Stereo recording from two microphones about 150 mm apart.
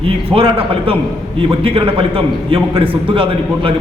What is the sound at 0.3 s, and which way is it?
A man's voice, 40° right (ahead or behind).